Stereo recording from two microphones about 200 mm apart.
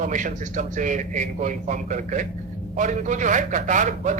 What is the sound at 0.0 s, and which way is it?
A man's voice, 40° right (ahead or behind).